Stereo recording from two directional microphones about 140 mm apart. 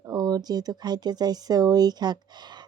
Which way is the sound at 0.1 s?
25° right (ahead or behind).